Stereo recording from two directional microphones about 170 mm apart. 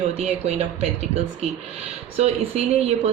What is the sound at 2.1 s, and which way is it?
Speech, 40° right (ahead or behind).